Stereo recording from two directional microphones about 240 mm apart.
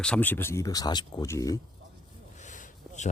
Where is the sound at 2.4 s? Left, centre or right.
Left.